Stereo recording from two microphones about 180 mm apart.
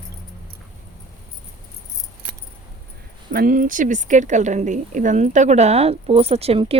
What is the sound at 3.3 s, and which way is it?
A woman's voice, 50° right (ahead or behind).